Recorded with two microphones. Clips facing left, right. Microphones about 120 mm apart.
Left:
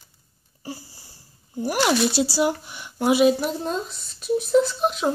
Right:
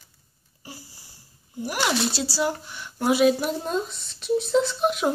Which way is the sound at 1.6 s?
25° left (ahead or behind).